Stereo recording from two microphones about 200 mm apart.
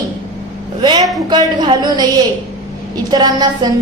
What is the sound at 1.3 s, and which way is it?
A woman's voice, 20° right (ahead or behind).